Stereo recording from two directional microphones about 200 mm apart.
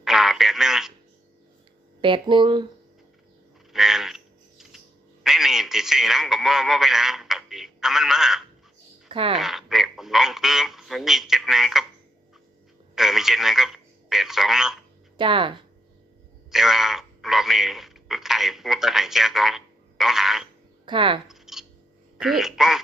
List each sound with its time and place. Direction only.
0.0 s a sound: centre (ahead or behind)
2.0 s speech: 25° right (ahead or behind)
3.7 s a sound: centre (ahead or behind)
5.2 s radio: centre (ahead or behind)
9.0 s a sound: 25° right (ahead or behind)
9.3 s speech: centre (ahead or behind)
13.0 s a man's voice: centre (ahead or behind)
15.2 s speech: 25° right (ahead or behind)
16.5 s speech: centre (ahead or behind)
20.8 s speech: 25° right (ahead or behind)
21.2 s a sound: centre (ahead or behind)
22.2 s speech: centre (ahead or behind)